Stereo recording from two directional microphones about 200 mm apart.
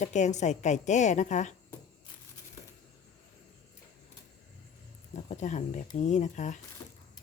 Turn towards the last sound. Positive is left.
turn(degrees=40)  # may be behind; listen again after turning